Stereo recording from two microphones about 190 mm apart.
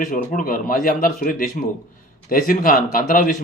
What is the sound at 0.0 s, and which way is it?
A man's voice, 45° left (ahead or behind).